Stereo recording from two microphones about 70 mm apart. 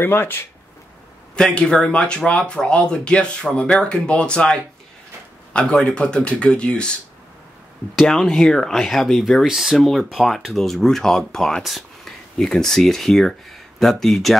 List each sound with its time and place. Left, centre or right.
0.0 s speech: left
1.3 s speech: centre
8.1 s speech: centre